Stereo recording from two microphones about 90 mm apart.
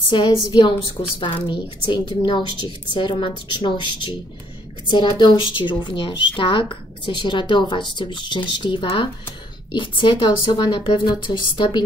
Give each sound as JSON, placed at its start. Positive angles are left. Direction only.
{"t": 0.1, "sound": "a woman's voice", "side_deg": 60}
{"t": 10.5, "sound": "speech", "side_deg": 60}